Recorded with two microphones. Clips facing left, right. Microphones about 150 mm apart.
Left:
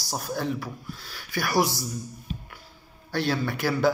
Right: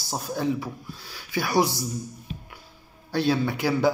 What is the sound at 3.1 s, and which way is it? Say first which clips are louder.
Speech: right 3 dB; 20° right (ahead or behind).